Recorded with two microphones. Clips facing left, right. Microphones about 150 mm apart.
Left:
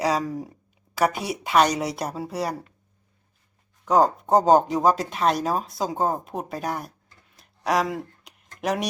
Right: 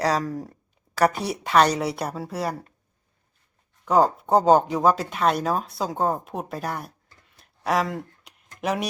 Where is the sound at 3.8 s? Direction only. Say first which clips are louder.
Even; 5° right (ahead or behind).